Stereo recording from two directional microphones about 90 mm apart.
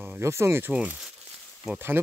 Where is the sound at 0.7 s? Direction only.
15° right (ahead or behind).